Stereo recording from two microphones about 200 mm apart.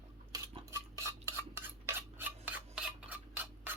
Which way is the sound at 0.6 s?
15° right (ahead or behind).